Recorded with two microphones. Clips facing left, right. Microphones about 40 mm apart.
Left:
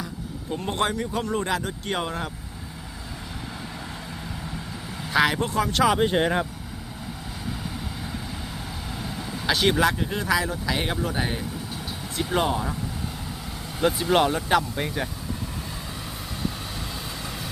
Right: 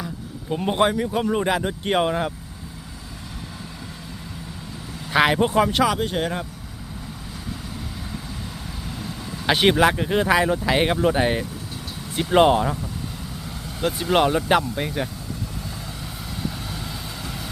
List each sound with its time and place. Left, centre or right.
0.5 s speech: centre
5.1 s speech: right
6.0 s speech: centre
9.5 s speech: right
13.8 s speech: centre
14.8 s speech: centre